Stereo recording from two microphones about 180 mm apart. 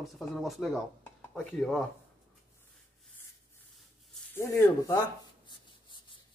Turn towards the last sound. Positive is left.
turn(degrees=20)  # may be behind; listen again after turning